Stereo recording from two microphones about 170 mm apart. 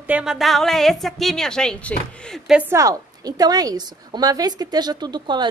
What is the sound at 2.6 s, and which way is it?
A woman's voice, 15° right (ahead or behind).